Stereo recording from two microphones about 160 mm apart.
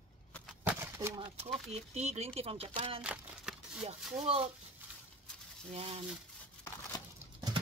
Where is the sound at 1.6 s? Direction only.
45° right (ahead or behind).